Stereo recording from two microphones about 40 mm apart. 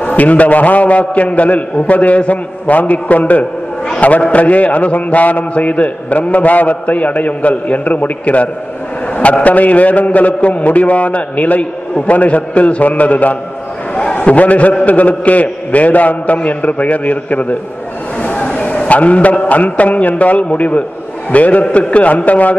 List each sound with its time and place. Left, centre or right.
0.0 s a man's voice: left